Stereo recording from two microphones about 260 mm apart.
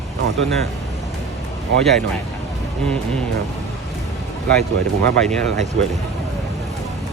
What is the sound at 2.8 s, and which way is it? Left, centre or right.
Speech, centre.